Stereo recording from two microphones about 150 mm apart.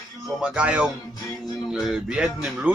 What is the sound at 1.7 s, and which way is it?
Music, 5° right (ahead or behind).